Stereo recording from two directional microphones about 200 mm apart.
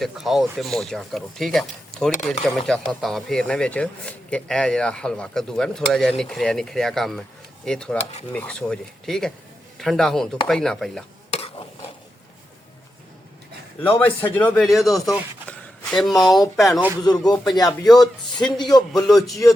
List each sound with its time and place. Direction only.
0.0 s speech: centre (ahead or behind)
11.3 s stir: 25° left (ahead or behind)
14.0 s speech: 10° left (ahead or behind)
17.0 s speech: 20° left (ahead or behind)
18.8 s speech: centre (ahead or behind)